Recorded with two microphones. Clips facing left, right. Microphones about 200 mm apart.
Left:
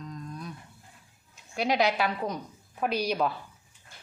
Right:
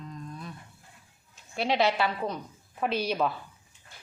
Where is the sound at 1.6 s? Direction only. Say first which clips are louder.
Even; centre (ahead or behind).